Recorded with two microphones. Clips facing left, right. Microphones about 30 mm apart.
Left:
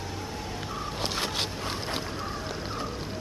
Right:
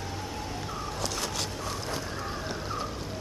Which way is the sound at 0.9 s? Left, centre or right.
Left.